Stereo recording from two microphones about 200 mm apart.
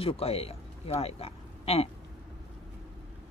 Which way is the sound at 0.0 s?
30° left (ahead or behind).